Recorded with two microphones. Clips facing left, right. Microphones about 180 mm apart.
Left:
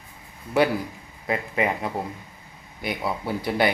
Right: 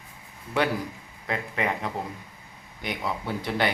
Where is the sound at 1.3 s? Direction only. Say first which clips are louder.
Left 4 dB; 10° left (ahead or behind).